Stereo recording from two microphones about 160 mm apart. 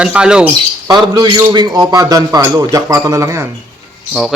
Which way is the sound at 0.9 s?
25° right (ahead or behind).